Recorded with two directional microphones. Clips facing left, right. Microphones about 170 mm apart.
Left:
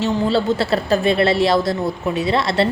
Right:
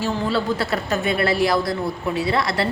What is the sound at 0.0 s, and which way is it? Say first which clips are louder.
A woman's voice: left 4 dB; 25° left (ahead or behind).